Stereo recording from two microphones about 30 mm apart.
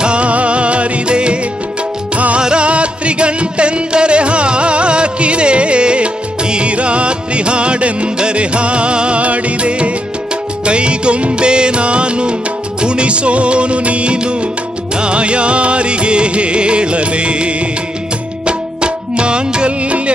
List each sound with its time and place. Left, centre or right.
0.0 s music: right
2.4 s music: right
14.1 s music: right